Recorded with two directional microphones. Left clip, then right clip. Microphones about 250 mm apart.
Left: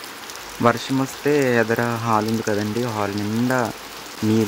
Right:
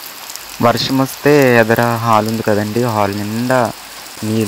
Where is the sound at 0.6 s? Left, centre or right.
Centre.